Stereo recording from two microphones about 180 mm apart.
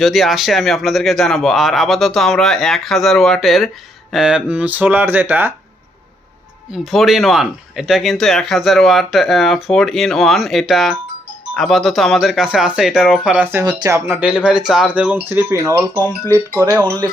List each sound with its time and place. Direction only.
0.0 s speech: centre (ahead or behind)
6.7 s speech: centre (ahead or behind)
13.7 s speech: 20° right (ahead or behind)